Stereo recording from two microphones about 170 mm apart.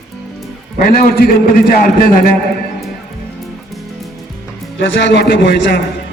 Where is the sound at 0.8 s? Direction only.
60° left (ahead or behind).